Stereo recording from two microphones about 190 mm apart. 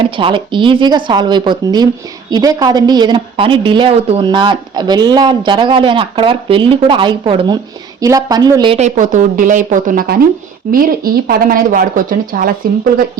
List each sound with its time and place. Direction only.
0.2 s a woman's voice: 25° right (ahead or behind)
8.8 s speech: 40° right (ahead or behind)